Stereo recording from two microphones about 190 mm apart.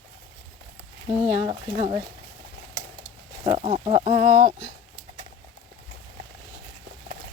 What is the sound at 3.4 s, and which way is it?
Speech, 25° right (ahead or behind).